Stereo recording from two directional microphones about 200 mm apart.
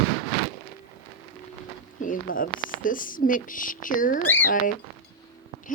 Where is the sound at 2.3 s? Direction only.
45° left (ahead or behind).